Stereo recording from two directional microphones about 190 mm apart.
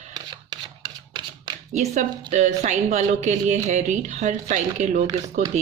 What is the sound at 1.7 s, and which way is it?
A woman's voice, 40° right (ahead or behind).